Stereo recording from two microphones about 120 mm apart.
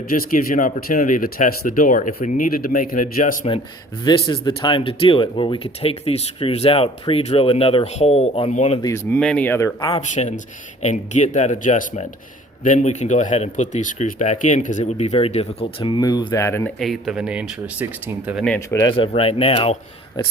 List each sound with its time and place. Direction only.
0.1 s speech: 90° left
3.4 s speech: 55° left (ahead or behind)
9.0 s speech: 10° left (ahead or behind)
10.0 s speech: 80° left; by 16.0 s 50° left (ahead or behind)
16.0 s speech: 30° left (ahead or behind)
16.7 s speech: centre (ahead or behind)
18.9 s speech: 50° left (ahead or behind)
20.2 s speech: 35° left (ahead or behind)